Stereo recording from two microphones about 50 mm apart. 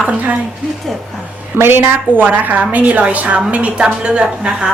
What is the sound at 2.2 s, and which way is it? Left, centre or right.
A woman's voice, right.